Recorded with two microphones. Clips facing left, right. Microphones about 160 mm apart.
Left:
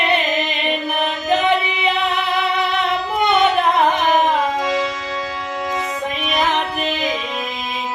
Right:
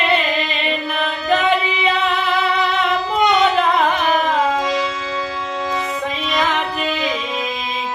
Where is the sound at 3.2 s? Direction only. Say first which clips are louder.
Even; 20° left (ahead or behind).